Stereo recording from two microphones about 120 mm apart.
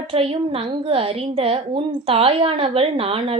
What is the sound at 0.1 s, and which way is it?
A woman's voice, 50° right (ahead or behind).